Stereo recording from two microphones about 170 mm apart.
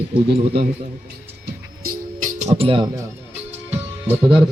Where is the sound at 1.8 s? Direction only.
55° right (ahead or behind).